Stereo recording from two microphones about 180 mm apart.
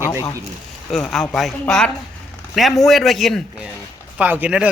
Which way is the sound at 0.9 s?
Centre (ahead or behind).